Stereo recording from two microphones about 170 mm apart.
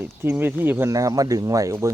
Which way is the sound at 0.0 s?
15° right (ahead or behind).